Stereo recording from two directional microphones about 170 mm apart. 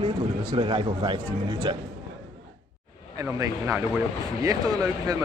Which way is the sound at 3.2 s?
15° right (ahead or behind).